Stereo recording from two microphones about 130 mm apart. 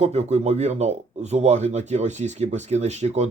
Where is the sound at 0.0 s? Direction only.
55° right (ahead or behind).